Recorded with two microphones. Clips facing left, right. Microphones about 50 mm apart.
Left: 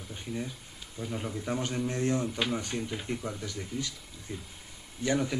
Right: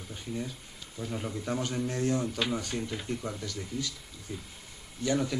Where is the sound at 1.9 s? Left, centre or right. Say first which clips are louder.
Even; left.